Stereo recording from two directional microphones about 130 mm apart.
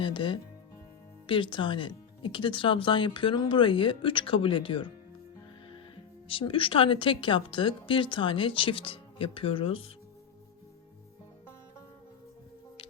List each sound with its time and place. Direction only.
0.0 s speech: 40° left (ahead or behind)
6.2 s speech: 45° left (ahead or behind)